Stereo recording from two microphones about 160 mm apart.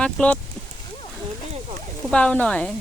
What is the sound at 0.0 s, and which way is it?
Speech, 5° left (ahead or behind).